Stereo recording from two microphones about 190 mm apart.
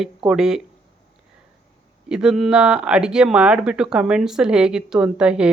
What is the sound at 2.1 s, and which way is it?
Speech, 5° right (ahead or behind).